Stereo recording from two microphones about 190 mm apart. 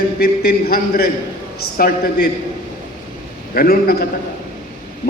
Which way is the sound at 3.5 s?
50° left (ahead or behind).